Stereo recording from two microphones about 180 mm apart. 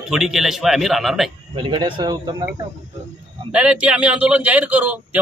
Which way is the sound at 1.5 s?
25° right (ahead or behind).